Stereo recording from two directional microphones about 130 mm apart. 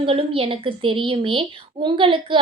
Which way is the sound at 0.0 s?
45° right (ahead or behind).